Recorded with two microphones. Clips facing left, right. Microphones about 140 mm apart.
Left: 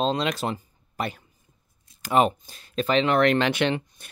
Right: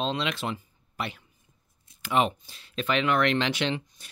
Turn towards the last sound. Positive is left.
turn(degrees=55)  # may be behind; listen again after turning